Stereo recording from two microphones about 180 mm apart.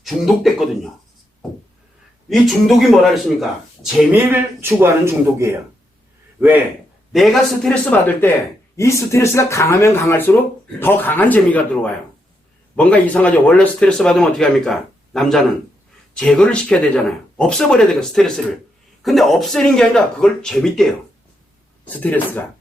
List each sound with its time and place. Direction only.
0.0 s a man's voice: centre (ahead or behind)
2.3 s a man's voice: centre (ahead or behind)
4.3 s a man's voice: 15° right (ahead or behind)
7.1 s a man's voice: centre (ahead or behind)